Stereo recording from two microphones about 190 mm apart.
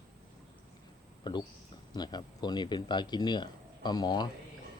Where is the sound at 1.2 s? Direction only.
25° left (ahead or behind).